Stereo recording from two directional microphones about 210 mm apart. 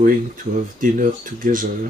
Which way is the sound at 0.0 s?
40° right (ahead or behind).